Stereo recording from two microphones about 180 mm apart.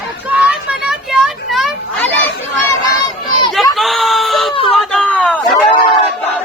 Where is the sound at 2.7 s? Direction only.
20° left (ahead or behind).